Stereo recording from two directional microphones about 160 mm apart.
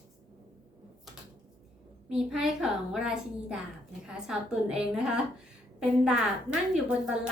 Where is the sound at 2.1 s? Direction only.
Centre (ahead or behind).